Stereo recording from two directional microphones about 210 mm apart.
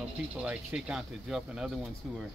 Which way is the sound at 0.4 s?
5° right (ahead or behind).